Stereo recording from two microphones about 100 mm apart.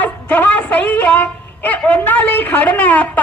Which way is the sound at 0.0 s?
15° left (ahead or behind).